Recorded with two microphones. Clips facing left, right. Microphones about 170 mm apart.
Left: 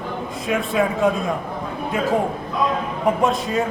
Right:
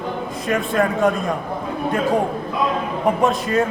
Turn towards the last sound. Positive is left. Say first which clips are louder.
# right 2 dB
turn(degrees=0)  # may be behind; listen again after turning